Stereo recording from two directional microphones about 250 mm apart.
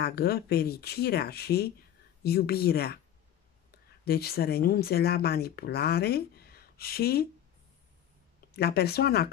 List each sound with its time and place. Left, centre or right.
0.0 s speech: left
4.0 s speech: left
8.5 s speech: left